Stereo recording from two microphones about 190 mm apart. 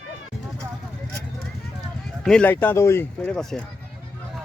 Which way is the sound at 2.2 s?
5° left (ahead or behind).